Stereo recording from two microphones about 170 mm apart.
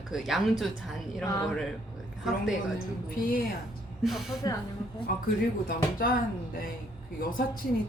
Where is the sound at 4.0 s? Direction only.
Centre (ahead or behind).